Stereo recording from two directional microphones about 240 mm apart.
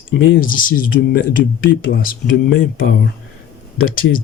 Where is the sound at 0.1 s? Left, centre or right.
Left.